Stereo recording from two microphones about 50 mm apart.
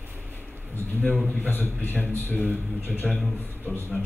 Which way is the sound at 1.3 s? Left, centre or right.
Left.